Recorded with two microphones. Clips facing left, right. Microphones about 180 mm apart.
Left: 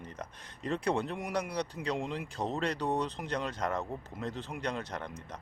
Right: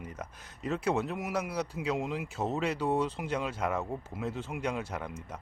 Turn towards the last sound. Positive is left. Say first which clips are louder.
# right 2 dB
turn(degrees=-5)  # may be behind; listen again after turning